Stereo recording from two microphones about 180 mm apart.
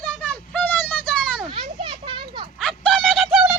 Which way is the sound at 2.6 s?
Centre (ahead or behind).